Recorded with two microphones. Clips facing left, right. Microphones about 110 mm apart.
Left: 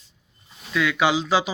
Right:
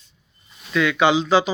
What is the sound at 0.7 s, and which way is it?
Speech, 5° left (ahead or behind).